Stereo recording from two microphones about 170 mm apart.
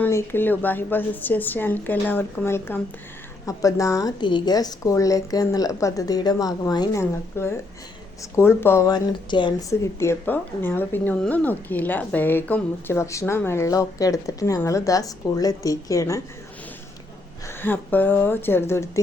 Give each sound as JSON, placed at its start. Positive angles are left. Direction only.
{"t": 0.0, "sound": "a woman's voice", "side_deg": 15}
{"t": 17.6, "sound": "speech", "side_deg": 10}